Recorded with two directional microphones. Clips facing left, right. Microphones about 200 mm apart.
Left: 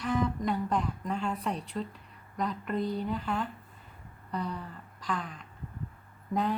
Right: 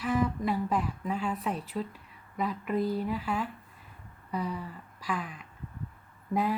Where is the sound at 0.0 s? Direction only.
5° right (ahead or behind).